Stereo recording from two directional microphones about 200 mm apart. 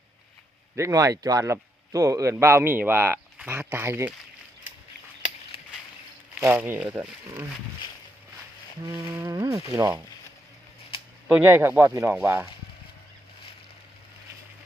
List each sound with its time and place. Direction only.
0.8 s speech: 15° right (ahead or behind)
5.5 s a sound: 30° left (ahead or behind)
6.4 s speech: 10° right (ahead or behind)
8.8 s speech: 15° right (ahead or behind)
11.3 s speech: 10° right (ahead or behind)